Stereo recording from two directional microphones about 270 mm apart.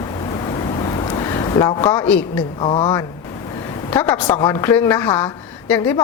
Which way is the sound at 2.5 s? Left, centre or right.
Centre.